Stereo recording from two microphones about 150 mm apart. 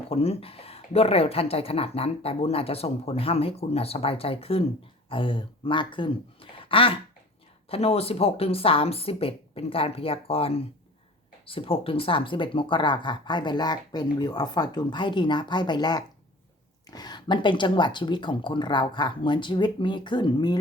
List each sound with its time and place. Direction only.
0.1 s speech: 40° left (ahead or behind)